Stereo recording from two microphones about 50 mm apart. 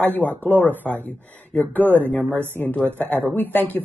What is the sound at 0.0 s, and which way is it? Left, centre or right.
Speech, left.